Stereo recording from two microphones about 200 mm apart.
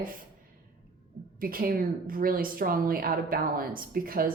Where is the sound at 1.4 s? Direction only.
45° right (ahead or behind).